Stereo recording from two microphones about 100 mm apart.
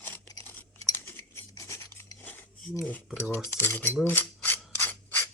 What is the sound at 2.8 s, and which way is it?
Speech, 15° left (ahead or behind).